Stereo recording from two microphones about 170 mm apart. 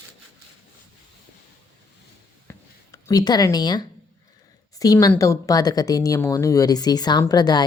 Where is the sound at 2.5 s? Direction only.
20° left (ahead or behind).